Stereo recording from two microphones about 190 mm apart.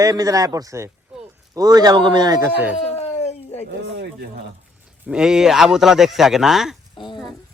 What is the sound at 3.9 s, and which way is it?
Speech, 60° right (ahead or behind).